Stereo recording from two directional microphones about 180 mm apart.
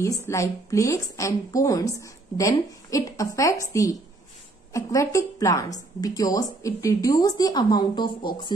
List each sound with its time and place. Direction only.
0.0 s a woman's voice: 15° left (ahead or behind)